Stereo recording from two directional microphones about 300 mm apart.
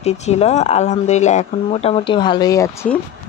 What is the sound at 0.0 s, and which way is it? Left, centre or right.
Speech, left.